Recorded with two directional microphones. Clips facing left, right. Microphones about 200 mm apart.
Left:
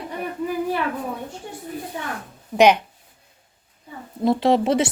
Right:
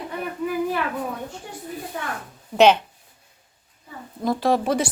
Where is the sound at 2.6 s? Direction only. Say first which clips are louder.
Even; 15° left (ahead or behind).